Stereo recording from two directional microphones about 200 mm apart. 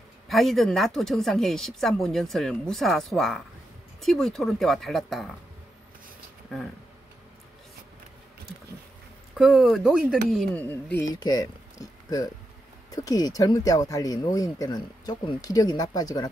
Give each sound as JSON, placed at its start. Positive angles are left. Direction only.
{"t": 0.3, "sound": "a woman's voice", "side_deg": 0}
{"t": 9.3, "sound": "a woman's voice", "side_deg": 0}